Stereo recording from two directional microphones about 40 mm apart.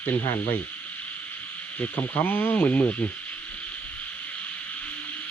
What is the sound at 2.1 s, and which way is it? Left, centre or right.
Speech, left.